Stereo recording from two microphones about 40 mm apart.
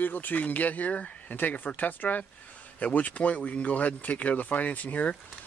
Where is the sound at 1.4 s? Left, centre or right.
Left.